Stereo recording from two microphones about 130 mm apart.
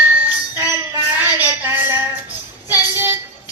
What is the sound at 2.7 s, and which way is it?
Child singing, 15° right (ahead or behind).